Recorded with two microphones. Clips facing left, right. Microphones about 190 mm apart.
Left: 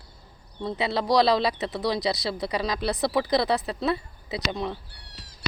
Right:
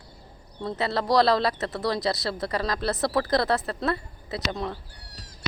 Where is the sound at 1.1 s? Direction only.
20° left (ahead or behind).